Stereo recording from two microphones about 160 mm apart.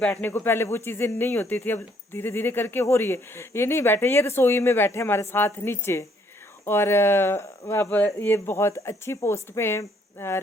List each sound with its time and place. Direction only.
0.0 s speech: 10° left (ahead or behind)